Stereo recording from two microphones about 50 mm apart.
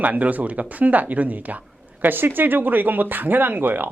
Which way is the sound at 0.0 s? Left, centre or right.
Right.